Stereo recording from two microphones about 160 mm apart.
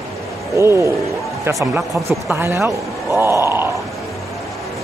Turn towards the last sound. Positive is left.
turn(degrees=-15)  # may be behind; listen again after turning